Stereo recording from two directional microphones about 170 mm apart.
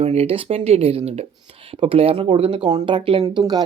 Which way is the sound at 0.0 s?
35° right (ahead or behind).